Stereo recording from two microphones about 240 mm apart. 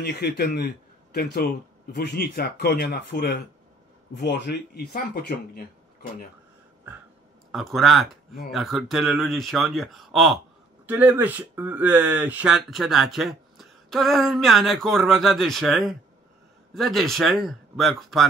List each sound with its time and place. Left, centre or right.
0.0 s a man's voice: left
7.5 s speech: centre